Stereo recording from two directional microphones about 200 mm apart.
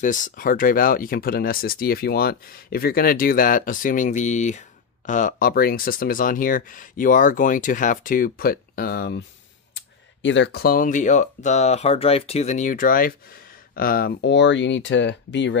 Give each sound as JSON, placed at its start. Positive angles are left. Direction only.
{"t": 0.0, "sound": "speech", "side_deg": 40}
{"t": 9.8, "sound": "speech", "side_deg": 65}